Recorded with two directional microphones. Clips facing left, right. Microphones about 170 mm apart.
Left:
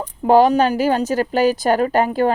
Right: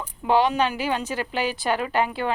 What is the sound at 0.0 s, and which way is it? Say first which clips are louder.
A woman's voice: left 8 dB; 40° left (ahead or behind).